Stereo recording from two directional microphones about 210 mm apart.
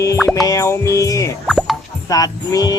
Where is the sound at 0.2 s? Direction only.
Centre (ahead or behind).